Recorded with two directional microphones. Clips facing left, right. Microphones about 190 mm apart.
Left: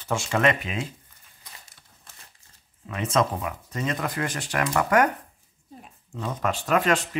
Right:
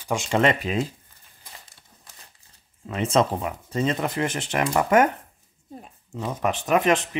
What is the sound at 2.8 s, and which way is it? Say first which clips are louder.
Speech: right 3 dB; 30° right (ahead or behind).